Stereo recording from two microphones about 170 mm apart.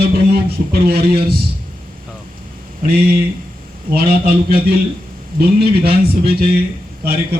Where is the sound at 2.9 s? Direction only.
65° right (ahead or behind).